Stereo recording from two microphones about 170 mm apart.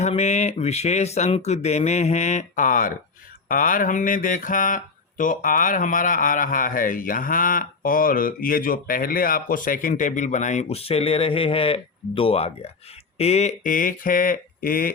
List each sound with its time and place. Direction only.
0.0 s speech: 40° left (ahead or behind); by 14.8 s 60° left (ahead or behind)